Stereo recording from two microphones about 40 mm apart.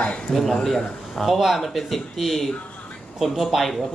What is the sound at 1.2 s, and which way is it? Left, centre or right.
Speech, centre.